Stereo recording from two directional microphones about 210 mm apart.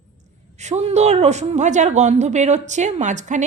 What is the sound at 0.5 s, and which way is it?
Speech, 35° right (ahead or behind).